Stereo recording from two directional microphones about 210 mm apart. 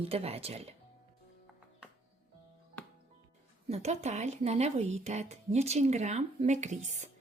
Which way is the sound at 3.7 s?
30° right (ahead or behind).